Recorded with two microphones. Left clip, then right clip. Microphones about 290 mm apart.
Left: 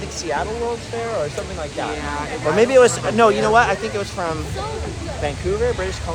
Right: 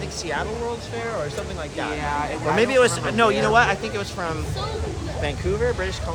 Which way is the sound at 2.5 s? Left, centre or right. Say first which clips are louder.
Left 5 dB; centre.